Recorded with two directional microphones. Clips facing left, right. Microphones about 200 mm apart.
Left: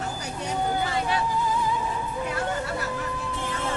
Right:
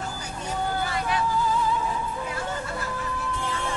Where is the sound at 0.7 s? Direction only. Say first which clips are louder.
Left 2 dB; 25° left (ahead or behind).